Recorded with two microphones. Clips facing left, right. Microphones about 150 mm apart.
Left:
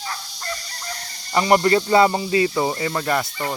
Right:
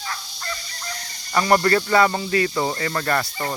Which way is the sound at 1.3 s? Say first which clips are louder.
Left 1 dB; 20° left (ahead or behind).